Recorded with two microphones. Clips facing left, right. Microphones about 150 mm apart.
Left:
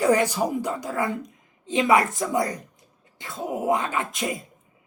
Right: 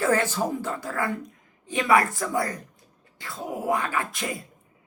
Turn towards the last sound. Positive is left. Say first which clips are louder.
# left 2 dB
turn(degrees=20)  # may be behind; listen again after turning